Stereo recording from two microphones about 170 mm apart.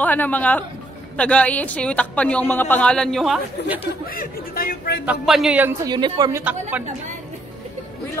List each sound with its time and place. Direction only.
0.0 s speech: 10° left (ahead or behind)
4.1 s a man's voice: 55° left (ahead or behind)
5.0 s a man's voice: 5° right (ahead or behind)
5.9 s a woman's voice: 25° right (ahead or behind)